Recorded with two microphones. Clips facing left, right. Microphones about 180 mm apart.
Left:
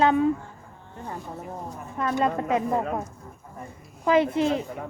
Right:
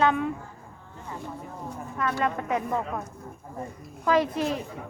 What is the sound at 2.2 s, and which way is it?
Speech, 30° left (ahead or behind).